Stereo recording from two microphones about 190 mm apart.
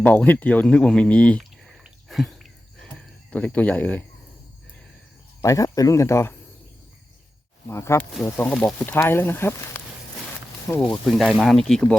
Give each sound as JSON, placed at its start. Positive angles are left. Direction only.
{"t": 0.0, "sound": "a sound", "side_deg": 10}
{"t": 3.3, "sound": "speech", "side_deg": 10}
{"t": 5.4, "sound": "speech", "side_deg": 15}
{"t": 7.7, "sound": "speech", "side_deg": 15}
{"t": 10.8, "sound": "speech", "side_deg": 0}